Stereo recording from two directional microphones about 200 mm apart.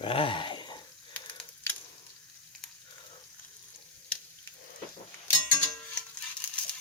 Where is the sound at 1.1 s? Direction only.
10° left (ahead or behind).